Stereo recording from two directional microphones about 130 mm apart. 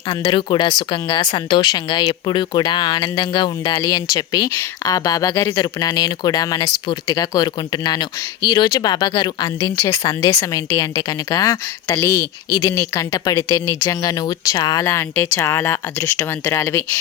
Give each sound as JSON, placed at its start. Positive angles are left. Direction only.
{"t": 0.2, "sound": "a woman's voice", "side_deg": 35}